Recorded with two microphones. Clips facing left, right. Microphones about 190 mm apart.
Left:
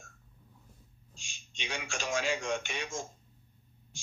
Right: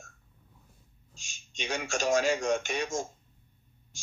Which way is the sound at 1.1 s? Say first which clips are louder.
Right 7 dB; 45° right (ahead or behind).